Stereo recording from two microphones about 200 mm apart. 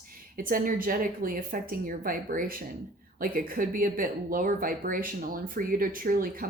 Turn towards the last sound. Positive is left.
turn(degrees=-45)  # may be behind; listen again after turning